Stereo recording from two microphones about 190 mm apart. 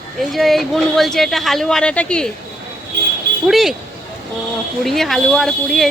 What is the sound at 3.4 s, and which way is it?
Speech, centre (ahead or behind).